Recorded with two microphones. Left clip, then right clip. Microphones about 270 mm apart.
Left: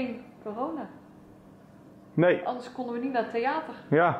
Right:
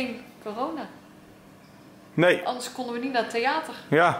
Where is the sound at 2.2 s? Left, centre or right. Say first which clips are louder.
Right 2 dB; centre.